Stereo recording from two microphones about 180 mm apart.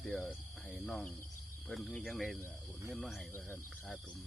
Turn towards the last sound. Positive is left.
turn(degrees=0)  # may be behind; listen again after turning